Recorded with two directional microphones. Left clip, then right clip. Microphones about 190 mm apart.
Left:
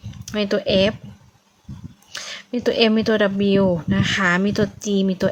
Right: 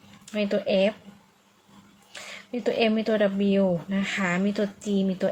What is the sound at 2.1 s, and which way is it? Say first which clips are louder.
Speech: left 7 dB; 35° left (ahead or behind).